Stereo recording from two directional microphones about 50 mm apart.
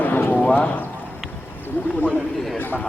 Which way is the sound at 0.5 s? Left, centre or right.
Left.